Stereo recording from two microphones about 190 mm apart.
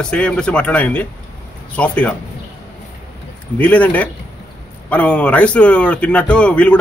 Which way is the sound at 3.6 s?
10° left (ahead or behind).